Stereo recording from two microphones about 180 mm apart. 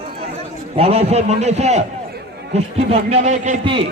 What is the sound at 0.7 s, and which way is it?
A man's voice, 35° right (ahead or behind).